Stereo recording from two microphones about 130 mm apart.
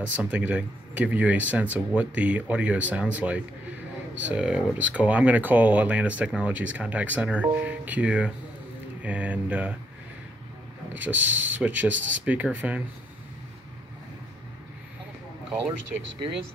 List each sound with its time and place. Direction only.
0.1 s speech: 10° right (ahead or behind)
11.0 s speech: 15° right (ahead or behind)